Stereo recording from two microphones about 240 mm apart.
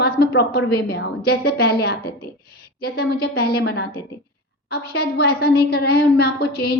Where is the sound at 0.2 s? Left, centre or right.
Left.